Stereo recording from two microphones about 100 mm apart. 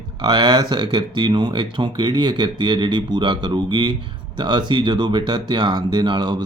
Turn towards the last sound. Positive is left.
turn(degrees=-50)  # may be behind; listen again after turning